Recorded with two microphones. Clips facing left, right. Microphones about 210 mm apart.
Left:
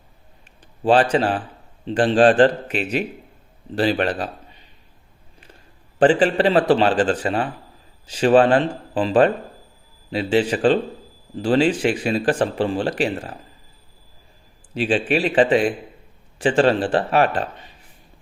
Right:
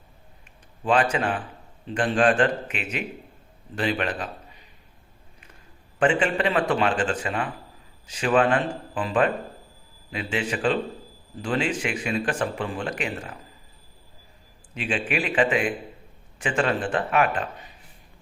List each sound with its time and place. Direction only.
0.9 s speech: 30° left (ahead or behind)
6.0 s speech: 35° left (ahead or behind)
14.8 s speech: 35° left (ahead or behind)